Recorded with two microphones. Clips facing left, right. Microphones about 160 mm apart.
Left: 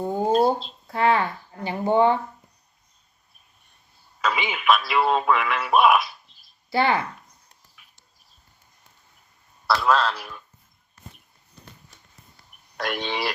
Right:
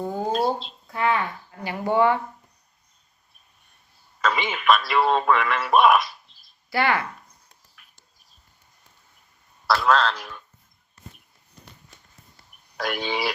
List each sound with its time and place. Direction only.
0.0 s a sound: 20° left (ahead or behind)
0.9 s speech: 30° left (ahead or behind)
4.2 s speech: centre (ahead or behind)
6.7 s speech: 25° left (ahead or behind)
7.8 s a sound: centre (ahead or behind)
9.6 s a man's voice: centre (ahead or behind)
12.7 s a man's voice: centre (ahead or behind)